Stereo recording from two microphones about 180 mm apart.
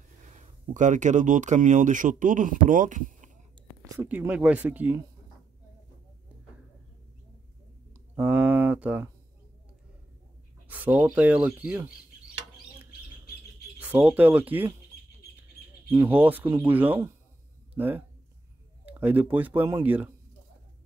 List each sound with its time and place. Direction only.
0.2 s speech: 40° right (ahead or behind)
4.0 s speech: 10° right (ahead or behind)
8.2 s a sound: 10° right (ahead or behind)
10.7 s speech: 10° right (ahead or behind)
13.7 s speech: 10° right (ahead or behind)
15.9 s speech: 10° right (ahead or behind)